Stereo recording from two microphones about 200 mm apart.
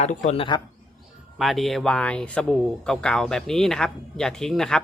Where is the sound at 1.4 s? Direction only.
Centre (ahead or behind).